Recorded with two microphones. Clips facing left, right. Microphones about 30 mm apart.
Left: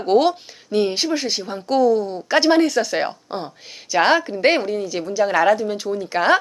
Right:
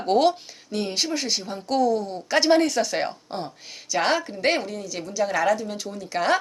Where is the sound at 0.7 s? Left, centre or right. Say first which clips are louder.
Left 9 dB; left.